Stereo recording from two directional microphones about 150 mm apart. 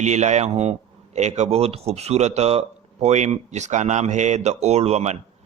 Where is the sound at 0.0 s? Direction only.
50° right (ahead or behind).